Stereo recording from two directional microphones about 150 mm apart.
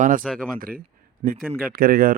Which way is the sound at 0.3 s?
Centre (ahead or behind).